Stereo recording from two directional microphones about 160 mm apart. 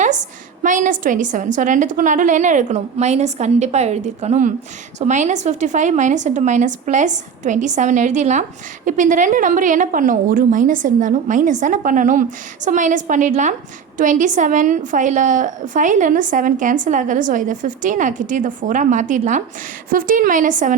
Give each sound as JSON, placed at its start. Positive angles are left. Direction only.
{"t": 0.6, "sound": "a woman's voice", "side_deg": -55}